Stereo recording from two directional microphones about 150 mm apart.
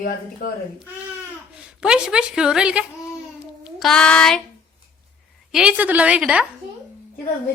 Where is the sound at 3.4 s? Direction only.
5° right (ahead or behind).